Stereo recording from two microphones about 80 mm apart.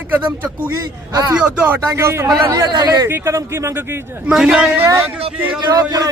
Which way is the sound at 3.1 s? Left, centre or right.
Right.